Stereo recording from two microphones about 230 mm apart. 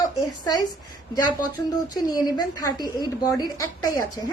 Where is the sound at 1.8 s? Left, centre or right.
Centre.